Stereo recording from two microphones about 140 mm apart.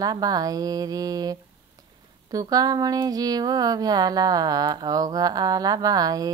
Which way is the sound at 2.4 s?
25° right (ahead or behind).